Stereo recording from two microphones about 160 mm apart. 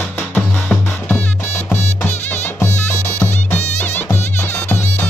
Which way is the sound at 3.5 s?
45° left (ahead or behind).